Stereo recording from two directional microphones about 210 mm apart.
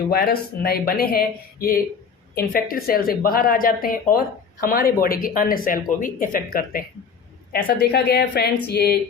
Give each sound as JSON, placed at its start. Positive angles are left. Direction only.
{"t": 0.1, "sound": "speech", "side_deg": 45}